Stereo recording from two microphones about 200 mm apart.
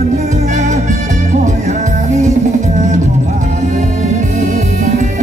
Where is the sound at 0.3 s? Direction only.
40° right (ahead or behind).